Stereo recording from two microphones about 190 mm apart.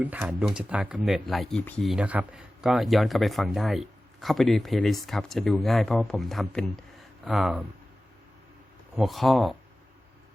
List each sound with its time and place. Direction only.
0.0 s speech: 10° right (ahead or behind)
9.0 s speech: centre (ahead or behind)